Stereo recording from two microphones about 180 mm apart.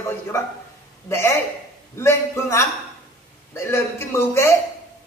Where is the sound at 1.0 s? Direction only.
15° left (ahead or behind).